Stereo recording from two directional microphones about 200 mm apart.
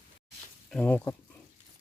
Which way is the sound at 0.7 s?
5° left (ahead or behind).